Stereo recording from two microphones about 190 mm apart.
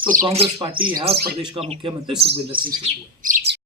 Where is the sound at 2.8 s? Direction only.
45° right (ahead or behind).